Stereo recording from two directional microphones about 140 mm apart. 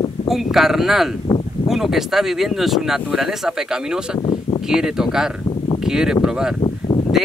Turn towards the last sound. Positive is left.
turn(degrees=40)  # may be behind; listen again after turning